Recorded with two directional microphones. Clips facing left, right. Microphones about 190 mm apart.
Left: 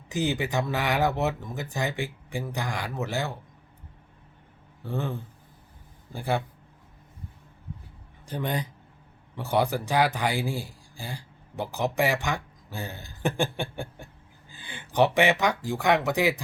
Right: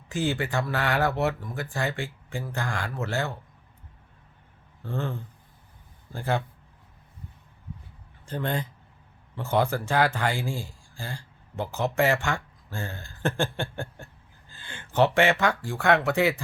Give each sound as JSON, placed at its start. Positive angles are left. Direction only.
{"t": 0.1, "sound": "speech", "side_deg": 20}
{"t": 4.8, "sound": "speech", "side_deg": 15}
{"t": 6.1, "sound": "speech", "side_deg": 10}
{"t": 8.3, "sound": "speech", "side_deg": 15}